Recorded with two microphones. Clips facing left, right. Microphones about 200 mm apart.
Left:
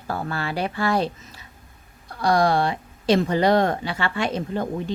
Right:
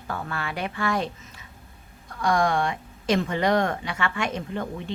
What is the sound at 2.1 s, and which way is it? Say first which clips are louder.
A woman's voice: left 3 dB; 35° left (ahead or behind).